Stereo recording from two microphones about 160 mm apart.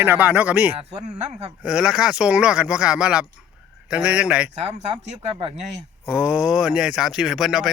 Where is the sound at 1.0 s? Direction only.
40° right (ahead or behind).